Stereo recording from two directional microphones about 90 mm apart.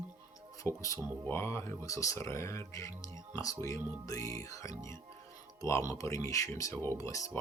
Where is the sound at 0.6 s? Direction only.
35° left (ahead or behind).